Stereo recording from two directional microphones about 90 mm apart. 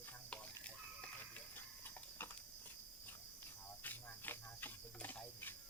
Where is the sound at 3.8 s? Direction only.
20° left (ahead or behind).